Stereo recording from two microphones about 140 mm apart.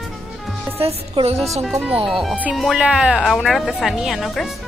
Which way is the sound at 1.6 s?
5° right (ahead or behind).